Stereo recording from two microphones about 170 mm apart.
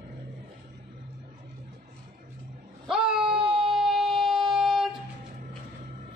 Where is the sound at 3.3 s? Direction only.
30° right (ahead or behind).